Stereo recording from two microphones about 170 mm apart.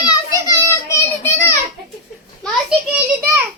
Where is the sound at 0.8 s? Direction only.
15° left (ahead or behind).